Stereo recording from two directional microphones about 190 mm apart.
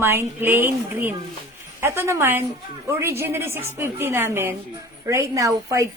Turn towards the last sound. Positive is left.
turn(degrees=-15)  # may be behind; listen again after turning